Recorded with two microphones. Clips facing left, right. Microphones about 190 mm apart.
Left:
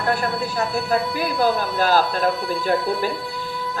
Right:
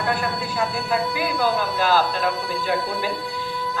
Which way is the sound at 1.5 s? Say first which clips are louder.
Left 1 dB; 45° left (ahead or behind).